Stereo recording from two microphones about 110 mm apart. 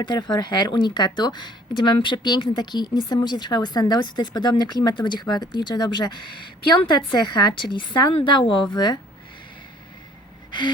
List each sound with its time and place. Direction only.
0.0 s a woman's voice: 40° left (ahead or behind)